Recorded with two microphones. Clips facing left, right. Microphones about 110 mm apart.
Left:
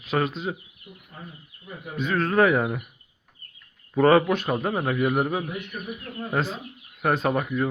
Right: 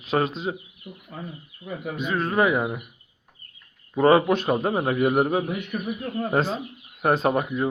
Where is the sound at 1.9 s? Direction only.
10° right (ahead or behind).